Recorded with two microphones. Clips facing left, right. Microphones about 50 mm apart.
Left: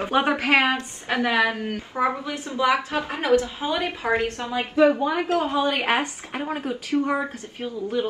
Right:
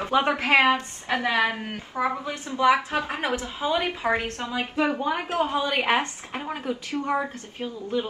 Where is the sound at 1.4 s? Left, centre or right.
Right.